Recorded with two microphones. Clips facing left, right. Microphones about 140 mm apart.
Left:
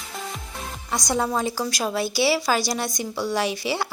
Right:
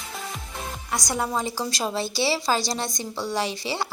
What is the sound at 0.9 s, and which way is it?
A woman's voice, 10° right (ahead or behind).